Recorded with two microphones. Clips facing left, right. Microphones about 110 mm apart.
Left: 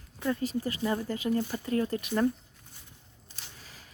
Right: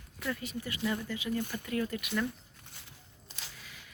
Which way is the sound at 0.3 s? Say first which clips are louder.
Left 7 dB; 35° left (ahead or behind).